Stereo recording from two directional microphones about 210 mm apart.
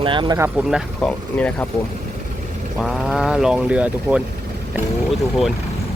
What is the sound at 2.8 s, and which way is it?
Speech, centre (ahead or behind).